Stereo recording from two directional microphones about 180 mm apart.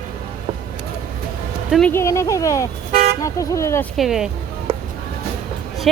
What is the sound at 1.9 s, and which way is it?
Speech, 15° left (ahead or behind).